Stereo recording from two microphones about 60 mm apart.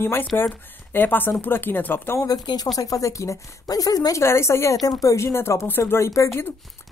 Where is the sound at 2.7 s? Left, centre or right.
Left.